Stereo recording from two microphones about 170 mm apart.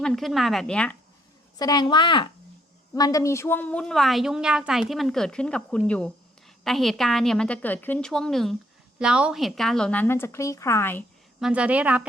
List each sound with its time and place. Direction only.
0.0 s a woman's voice: centre (ahead or behind)
1.5 s a woman's voice: 25° left (ahead or behind)
11.3 s a woman's voice: 5° right (ahead or behind)